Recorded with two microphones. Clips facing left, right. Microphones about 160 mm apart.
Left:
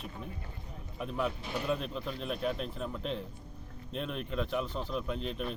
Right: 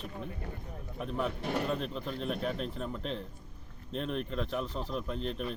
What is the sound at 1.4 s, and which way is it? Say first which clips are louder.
Speech: right 4 dB; 65° right (ahead or behind).